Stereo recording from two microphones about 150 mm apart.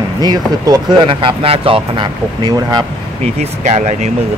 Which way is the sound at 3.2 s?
50° right (ahead or behind).